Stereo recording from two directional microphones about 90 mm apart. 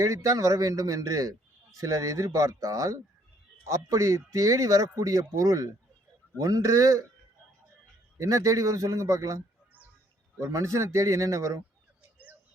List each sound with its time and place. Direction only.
0.0 s a man's voice: 35° right (ahead or behind)
8.2 s a man's voice: 40° right (ahead or behind)
10.4 s a man's voice: 35° right (ahead or behind)